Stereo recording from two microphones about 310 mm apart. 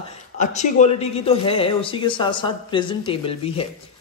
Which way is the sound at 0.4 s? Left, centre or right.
Left.